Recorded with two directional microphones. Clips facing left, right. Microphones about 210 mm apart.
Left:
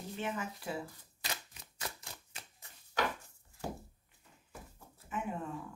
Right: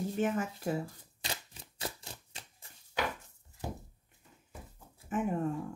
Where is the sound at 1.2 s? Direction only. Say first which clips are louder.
Right 2 dB; 30° right (ahead or behind).